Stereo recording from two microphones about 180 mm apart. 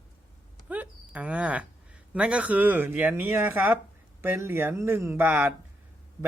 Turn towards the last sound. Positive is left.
turn(degrees=-10)  # may be behind; listen again after turning